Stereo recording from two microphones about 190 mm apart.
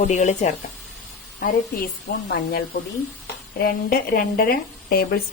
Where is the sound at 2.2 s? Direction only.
55° left (ahead or behind).